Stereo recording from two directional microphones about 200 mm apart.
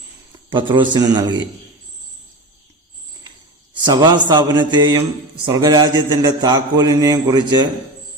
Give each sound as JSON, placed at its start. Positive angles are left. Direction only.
{"t": 0.5, "sound": "a man's voice", "side_deg": -25}
{"t": 3.8, "sound": "a man's voice", "side_deg": -20}